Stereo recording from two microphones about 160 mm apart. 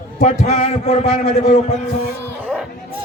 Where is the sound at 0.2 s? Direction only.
40° left (ahead or behind).